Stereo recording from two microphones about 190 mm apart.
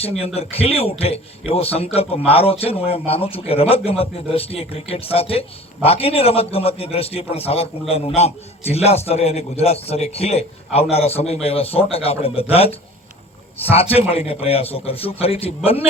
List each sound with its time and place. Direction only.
0.0 s a man's voice: 30° left (ahead or behind)